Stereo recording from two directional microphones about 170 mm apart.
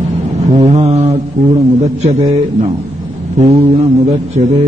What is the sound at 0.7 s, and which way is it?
Speech, 40° right (ahead or behind).